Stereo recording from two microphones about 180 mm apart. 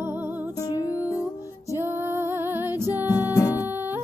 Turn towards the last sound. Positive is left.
turn(degrees=-10)  # may be behind; listen again after turning